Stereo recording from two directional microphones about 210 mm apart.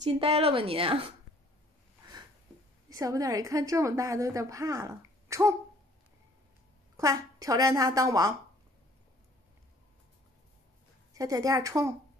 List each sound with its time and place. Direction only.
0.2 s a woman's voice: 25° right (ahead or behind)
2.9 s a woman's voice: 15° right (ahead or behind)
7.0 s a woman's voice: 15° right (ahead or behind)
11.1 s a woman's voice: 15° right (ahead or behind)